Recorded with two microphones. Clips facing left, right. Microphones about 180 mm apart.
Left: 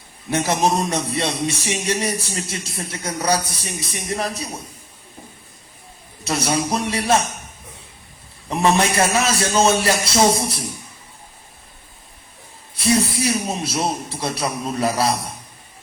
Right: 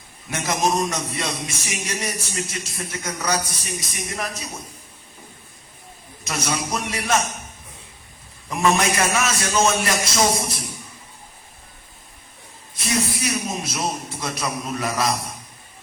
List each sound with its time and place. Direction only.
0.3 s a man's voice: 30° left (ahead or behind)
6.2 s a man's voice: 30° left (ahead or behind)
8.4 s a man's voice: 30° left (ahead or behind)
12.7 s a woman's voice: 30° left (ahead or behind)